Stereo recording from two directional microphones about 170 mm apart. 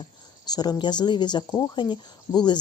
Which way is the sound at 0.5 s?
25° left (ahead or behind).